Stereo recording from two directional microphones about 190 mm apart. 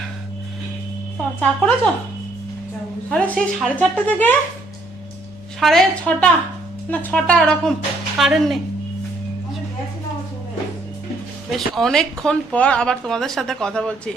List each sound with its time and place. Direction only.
1.4 s speech: 5° left (ahead or behind)
3.1 s speech: 5° left (ahead or behind)
5.5 s speech: centre (ahead or behind)
11.5 s speech: centre (ahead or behind)